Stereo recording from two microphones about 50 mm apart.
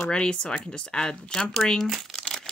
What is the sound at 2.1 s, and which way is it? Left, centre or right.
Crumpling, centre.